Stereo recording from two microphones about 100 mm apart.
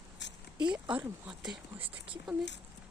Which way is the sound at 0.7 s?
10° right (ahead or behind).